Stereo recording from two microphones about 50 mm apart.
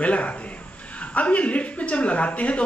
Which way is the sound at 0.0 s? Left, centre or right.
Left.